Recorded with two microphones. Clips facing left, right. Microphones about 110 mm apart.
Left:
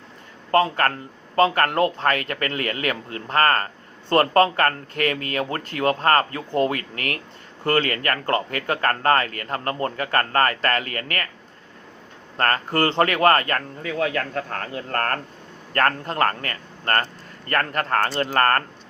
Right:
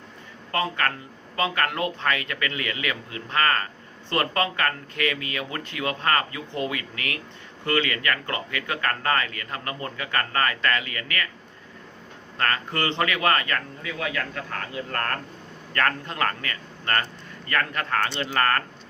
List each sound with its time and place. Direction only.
0.5 s speech: 35° left (ahead or behind)
12.4 s speech: 40° left (ahead or behind)